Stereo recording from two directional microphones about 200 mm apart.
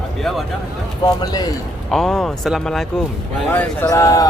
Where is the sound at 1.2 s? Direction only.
20° left (ahead or behind).